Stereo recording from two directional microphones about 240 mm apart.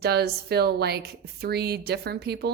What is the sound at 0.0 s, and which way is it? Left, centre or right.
A woman's voice, right.